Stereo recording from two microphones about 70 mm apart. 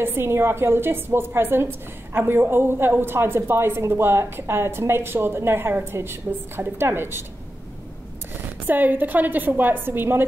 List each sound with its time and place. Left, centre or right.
0.0 s a woman's voice: right
8.6 s a woman's voice: right